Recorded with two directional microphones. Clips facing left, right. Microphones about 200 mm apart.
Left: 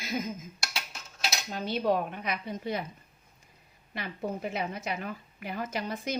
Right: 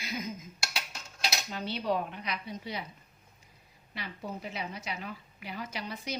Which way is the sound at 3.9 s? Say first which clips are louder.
Left 5 dB; 50° left (ahead or behind).